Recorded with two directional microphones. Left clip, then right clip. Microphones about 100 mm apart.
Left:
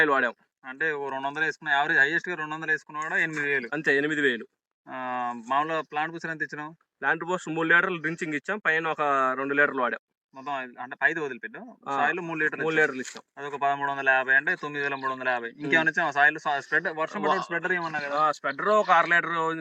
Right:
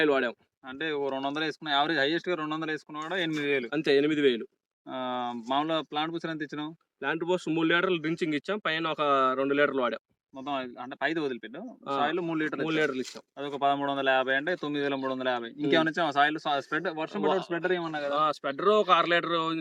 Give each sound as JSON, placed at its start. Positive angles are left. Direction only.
{"t": 0.0, "sound": "speech", "side_deg": -15}
{"t": 0.8, "sound": "speech", "side_deg": -40}
{"t": 3.7, "sound": "speech", "side_deg": -15}
{"t": 4.9, "sound": "speech", "side_deg": -45}
{"t": 6.1, "sound": "speech", "side_deg": -40}
{"t": 7.0, "sound": "speech", "side_deg": -10}
{"t": 10.4, "sound": "speech", "side_deg": -55}
{"t": 12.7, "sound": "speech", "side_deg": -20}
{"t": 13.6, "sound": "speech", "side_deg": -55}
{"t": 16.9, "sound": "speech", "side_deg": -35}
{"t": 18.1, "sound": "speech", "side_deg": -20}